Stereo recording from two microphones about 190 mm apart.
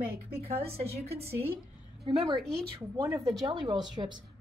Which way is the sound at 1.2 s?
10° right (ahead or behind).